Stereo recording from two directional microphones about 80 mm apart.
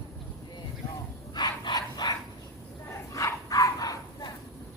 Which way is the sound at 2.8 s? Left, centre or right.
Left.